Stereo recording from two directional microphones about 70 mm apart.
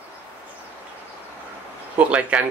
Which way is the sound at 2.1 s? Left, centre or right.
Centre.